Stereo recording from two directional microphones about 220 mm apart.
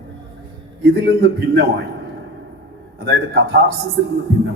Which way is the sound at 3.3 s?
45° right (ahead or behind).